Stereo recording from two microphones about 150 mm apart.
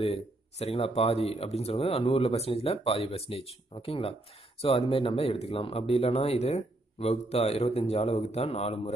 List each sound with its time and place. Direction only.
0.0 s speech: 45° left (ahead or behind)